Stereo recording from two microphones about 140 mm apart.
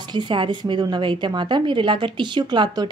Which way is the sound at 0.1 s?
35° right (ahead or behind).